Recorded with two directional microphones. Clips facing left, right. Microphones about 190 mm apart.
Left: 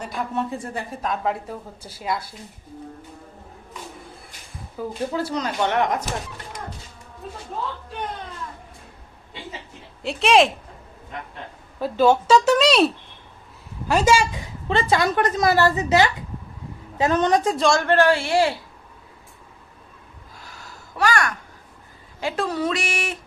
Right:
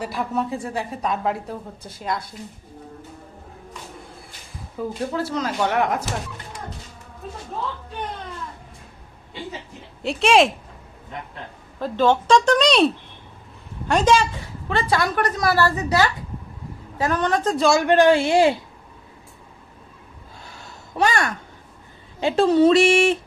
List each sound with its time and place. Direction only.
0.0 s a woman's voice: centre (ahead or behind)
4.8 s a woman's voice: centre (ahead or behind)
10.0 s a woman's voice: centre (ahead or behind)
11.8 s a woman's voice: 10° left (ahead or behind)
14.7 s a woman's voice: 20° left (ahead or behind)
17.6 s speech: 10° right (ahead or behind)
20.6 s a sound: 25° right (ahead or behind)
22.2 s speech: 25° right (ahead or behind)